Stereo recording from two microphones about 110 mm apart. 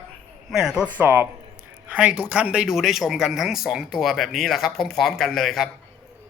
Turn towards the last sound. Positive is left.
turn(degrees=0)  # may be behind; listen again after turning